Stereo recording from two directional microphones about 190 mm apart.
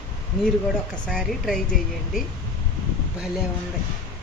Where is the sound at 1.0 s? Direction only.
Centre (ahead or behind).